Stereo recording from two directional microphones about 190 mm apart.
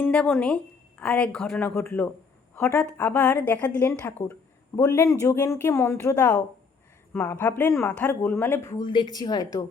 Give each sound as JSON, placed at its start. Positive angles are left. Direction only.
{"t": 0.0, "sound": "speech", "side_deg": 10}